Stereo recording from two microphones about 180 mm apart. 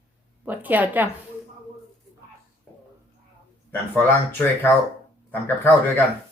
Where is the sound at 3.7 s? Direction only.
10° left (ahead or behind).